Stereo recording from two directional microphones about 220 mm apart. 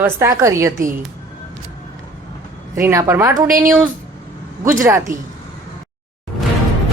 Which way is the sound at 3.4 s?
40° right (ahead or behind).